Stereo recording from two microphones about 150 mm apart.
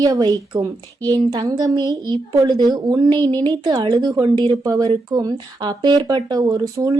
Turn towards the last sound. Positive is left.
turn(degrees=-20)  # may be behind; listen again after turning